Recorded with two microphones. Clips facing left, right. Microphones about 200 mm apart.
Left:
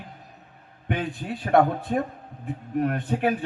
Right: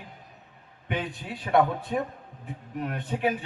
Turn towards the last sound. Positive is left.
turn(degrees=50)  # may be behind; listen again after turning